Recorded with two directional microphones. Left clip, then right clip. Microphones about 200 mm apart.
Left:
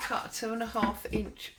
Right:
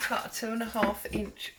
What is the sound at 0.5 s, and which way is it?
Speech, 35° left (ahead or behind).